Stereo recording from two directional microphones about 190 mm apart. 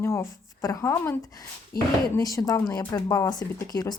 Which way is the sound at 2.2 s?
20° left (ahead or behind).